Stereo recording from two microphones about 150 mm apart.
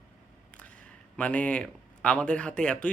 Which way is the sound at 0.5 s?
10° left (ahead or behind).